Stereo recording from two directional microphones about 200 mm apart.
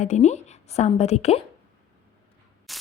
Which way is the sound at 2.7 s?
Centre (ahead or behind).